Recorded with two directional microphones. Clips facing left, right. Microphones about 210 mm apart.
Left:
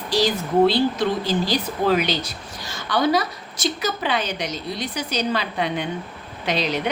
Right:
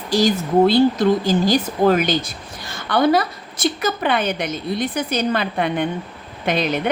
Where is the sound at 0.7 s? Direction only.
45° right (ahead or behind).